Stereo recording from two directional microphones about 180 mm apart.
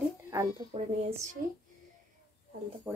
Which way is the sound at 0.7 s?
40° right (ahead or behind).